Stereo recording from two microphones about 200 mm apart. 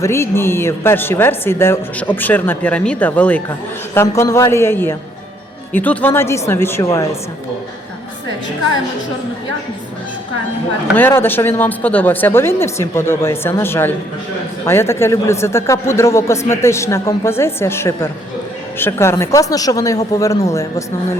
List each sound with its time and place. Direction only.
0.0 s a man's voice: 15° left (ahead or behind)
10.9 s a man's voice: 10° left (ahead or behind)